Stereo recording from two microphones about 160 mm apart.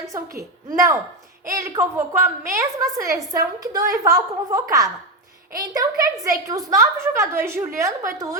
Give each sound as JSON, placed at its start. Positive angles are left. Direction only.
{"t": 0.0, "sound": "a woman's voice", "side_deg": -20}